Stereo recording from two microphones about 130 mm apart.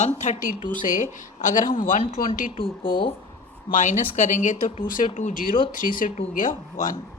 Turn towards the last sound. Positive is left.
turn(degrees=90)